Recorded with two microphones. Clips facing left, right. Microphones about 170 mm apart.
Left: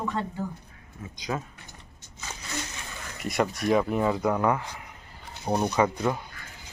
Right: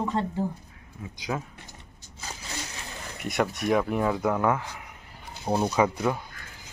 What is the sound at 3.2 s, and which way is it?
Speech, centre (ahead or behind).